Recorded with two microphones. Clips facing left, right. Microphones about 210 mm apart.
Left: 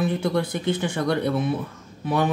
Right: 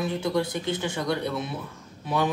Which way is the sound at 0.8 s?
55° left (ahead or behind).